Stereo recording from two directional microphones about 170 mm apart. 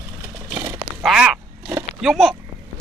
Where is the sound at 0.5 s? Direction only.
15° right (ahead or behind).